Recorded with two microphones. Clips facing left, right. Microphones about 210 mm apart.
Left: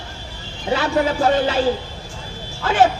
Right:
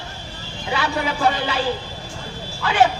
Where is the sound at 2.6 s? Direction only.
45° left (ahead or behind).